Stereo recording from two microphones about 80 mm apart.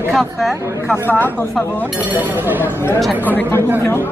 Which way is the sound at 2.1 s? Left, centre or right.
Right.